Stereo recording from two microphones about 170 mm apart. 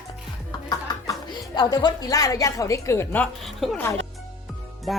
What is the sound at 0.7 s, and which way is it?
Speech, 25° left (ahead or behind).